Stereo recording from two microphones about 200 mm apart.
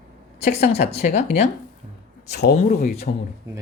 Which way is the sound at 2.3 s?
55° left (ahead or behind).